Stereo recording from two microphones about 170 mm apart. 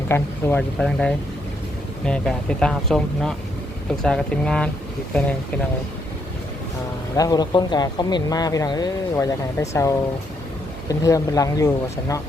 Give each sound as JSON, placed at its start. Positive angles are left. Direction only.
{"t": 0.1, "sound": "speech", "side_deg": 15}
{"t": 0.8, "sound": "speech", "side_deg": 5}
{"t": 7.2, "sound": "speech", "side_deg": 20}
{"t": 11.0, "sound": "speech", "side_deg": 20}